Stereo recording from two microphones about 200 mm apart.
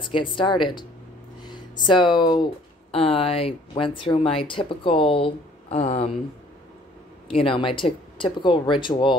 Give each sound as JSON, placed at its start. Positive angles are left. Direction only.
{"t": 0.0, "sound": "speech", "side_deg": 25}
{"t": 7.2, "sound": "speech", "side_deg": 25}